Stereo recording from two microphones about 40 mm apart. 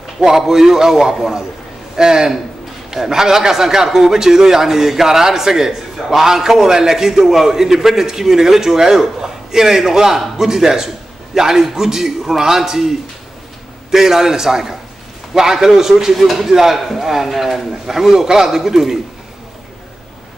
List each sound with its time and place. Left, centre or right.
0.2 s a man's voice: centre